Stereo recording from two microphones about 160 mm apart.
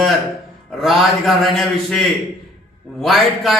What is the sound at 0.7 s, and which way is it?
A man's voice, centre (ahead or behind).